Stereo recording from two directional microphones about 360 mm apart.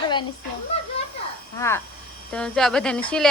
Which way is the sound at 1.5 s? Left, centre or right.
Centre.